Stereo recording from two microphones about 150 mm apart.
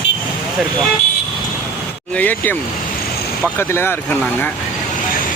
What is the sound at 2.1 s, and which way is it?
Speech, 15° left (ahead or behind).